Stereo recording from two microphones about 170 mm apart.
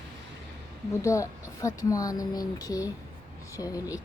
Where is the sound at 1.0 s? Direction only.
20° left (ahead or behind).